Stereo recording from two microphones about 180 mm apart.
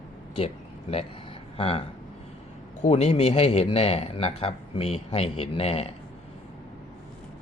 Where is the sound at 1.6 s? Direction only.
30° left (ahead or behind).